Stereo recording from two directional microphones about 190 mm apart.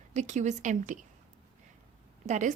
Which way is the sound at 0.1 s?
40° right (ahead or behind).